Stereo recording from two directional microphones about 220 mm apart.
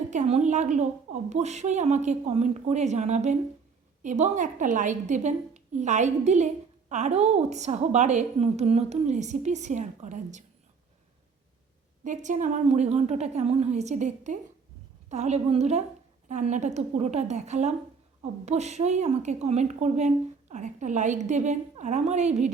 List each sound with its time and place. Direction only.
0.1 s a woman's voice: 30° right (ahead or behind)
12.0 s a woman's voice: 35° right (ahead or behind)